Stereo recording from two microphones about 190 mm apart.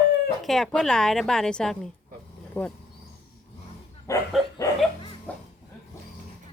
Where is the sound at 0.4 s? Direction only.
Centre (ahead or behind).